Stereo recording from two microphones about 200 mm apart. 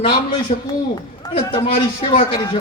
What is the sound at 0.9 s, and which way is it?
A man's voice, 20° left (ahead or behind).